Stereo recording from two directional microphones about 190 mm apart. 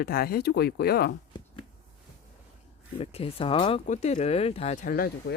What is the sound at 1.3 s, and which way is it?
Chopping, 25° left (ahead or behind).